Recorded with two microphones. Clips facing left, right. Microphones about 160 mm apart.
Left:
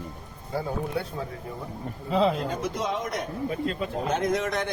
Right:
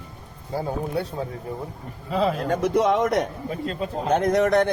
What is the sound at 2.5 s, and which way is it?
Speech, 65° right (ahead or behind).